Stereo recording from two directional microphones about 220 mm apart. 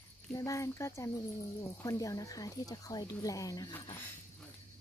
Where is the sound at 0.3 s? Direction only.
15° left (ahead or behind).